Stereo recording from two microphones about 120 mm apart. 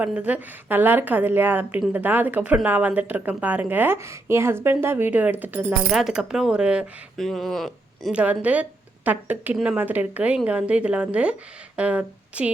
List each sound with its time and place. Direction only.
0.0 s speech: 10° right (ahead or behind)
5.9 s speech: centre (ahead or behind)
8.1 s speech: 10° right (ahead or behind)